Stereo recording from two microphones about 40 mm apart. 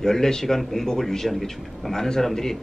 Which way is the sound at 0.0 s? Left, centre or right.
Centre.